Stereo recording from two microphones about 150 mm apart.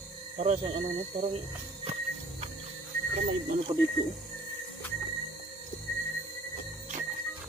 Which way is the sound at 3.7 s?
35° right (ahead or behind).